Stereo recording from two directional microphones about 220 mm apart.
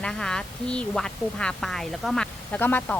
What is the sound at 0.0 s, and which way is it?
Speech, 5° left (ahead or behind).